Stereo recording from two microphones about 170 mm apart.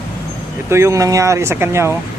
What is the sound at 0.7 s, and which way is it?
Speech, 15° right (ahead or behind).